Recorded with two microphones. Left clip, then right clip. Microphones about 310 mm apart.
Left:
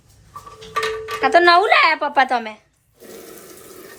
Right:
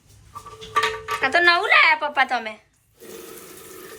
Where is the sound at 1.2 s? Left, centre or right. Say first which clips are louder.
Left 5 dB; centre.